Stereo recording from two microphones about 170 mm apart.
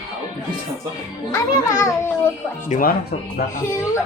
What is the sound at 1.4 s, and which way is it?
Speech, 20° left (ahead or behind).